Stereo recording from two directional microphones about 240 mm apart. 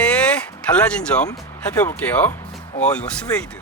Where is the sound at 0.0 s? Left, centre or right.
Centre.